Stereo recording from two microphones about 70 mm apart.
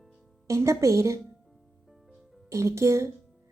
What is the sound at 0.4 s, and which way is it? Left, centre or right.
Speech, right.